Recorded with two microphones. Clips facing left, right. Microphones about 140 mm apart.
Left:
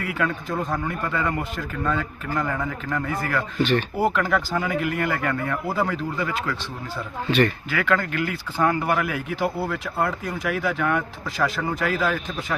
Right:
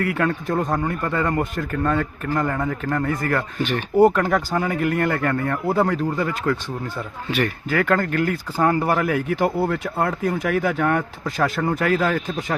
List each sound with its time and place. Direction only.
0.0 s speech: 55° right (ahead or behind)
3.6 s speech: 10° right (ahead or behind)
3.9 s speech: 45° right (ahead or behind)
7.3 s speech: 10° right (ahead or behind)
7.7 s speech: 45° right (ahead or behind)